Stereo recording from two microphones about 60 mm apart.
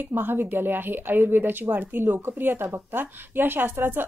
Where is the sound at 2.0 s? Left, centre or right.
Right.